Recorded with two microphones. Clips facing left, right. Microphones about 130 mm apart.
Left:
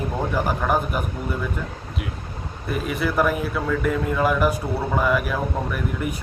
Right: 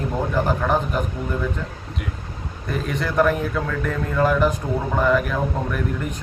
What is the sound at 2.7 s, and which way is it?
A man's voice, 5° left (ahead or behind).